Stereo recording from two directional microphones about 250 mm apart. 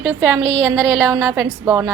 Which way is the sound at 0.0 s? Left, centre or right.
Centre.